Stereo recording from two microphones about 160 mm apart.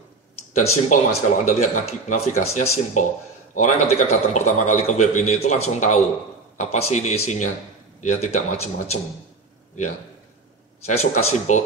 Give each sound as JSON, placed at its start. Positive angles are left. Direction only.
{"t": 0.6, "sound": "a man's voice", "side_deg": 50}
{"t": 10.8, "sound": "a man's voice", "side_deg": 40}